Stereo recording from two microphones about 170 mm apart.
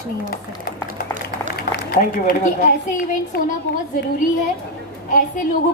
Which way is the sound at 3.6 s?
80° left.